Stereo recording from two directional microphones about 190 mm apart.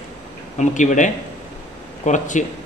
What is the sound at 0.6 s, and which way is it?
A man's voice, 40° left (ahead or behind).